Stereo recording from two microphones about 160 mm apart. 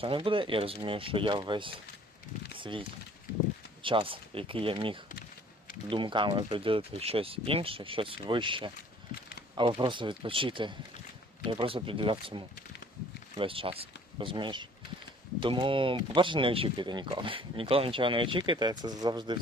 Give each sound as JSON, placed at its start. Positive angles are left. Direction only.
{"t": 0.0, "sound": "speech", "side_deg": -35}
{"t": 3.8, "sound": "speech", "side_deg": -35}